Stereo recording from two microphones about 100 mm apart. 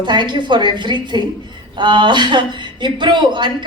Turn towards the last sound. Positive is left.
turn(degrees=-50)  # may be behind; listen again after turning